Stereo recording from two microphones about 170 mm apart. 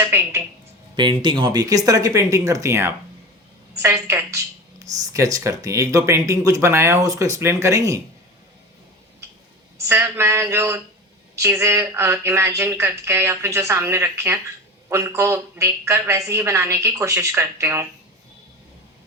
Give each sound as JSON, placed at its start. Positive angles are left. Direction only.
{"t": 0.0, "sound": "speech", "side_deg": -15}
{"t": 0.9, "sound": "speech", "side_deg": -25}
{"t": 9.8, "sound": "speech", "side_deg": -15}